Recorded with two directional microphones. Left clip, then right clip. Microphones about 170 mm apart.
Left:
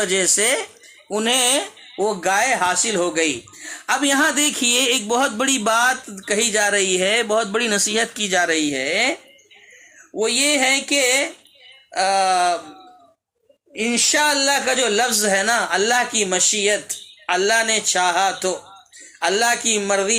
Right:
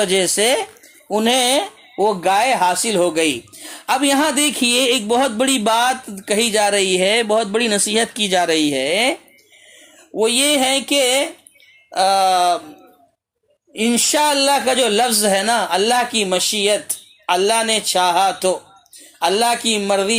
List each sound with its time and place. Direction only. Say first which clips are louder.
0.0 s speech: right 3 dB; 30° right (ahead or behind)
10.2 s speech: right 3 dB; 30° right (ahead or behind)
13.8 s speech: right 2 dB; 50° right (ahead or behind)
14.1 s speech: right 3 dB; 30° right (ahead or behind)